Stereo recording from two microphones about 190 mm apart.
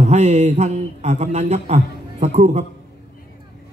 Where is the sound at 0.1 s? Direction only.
35° right (ahead or behind).